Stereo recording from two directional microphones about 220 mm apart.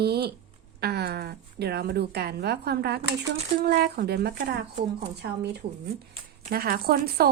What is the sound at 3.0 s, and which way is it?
Speech, 30° right (ahead or behind).